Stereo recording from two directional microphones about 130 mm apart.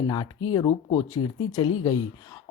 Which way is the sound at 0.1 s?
35° left (ahead or behind).